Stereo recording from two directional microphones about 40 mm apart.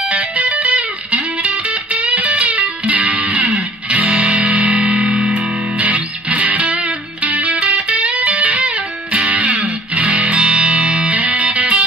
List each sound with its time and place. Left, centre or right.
0.0 s music: right
5.0 s music: right
5.3 s music: right